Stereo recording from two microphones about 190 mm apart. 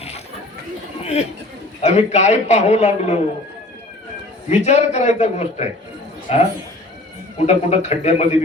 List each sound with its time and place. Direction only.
1.0 s a man's voice: 35° left (ahead or behind)
4.4 s a man's voice: 35° left (ahead or behind)